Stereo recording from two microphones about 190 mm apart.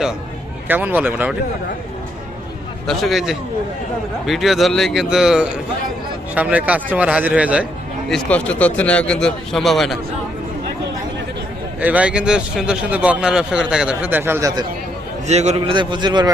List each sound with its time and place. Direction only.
0.7 s a man's voice: 10° right (ahead or behind)
2.8 s a man's voice: centre (ahead or behind)
8.1 s a man's voice: 5° left (ahead or behind)
11.8 s a man's voice: 5° right (ahead or behind)
15.3 s a man's voice: 35° right (ahead or behind)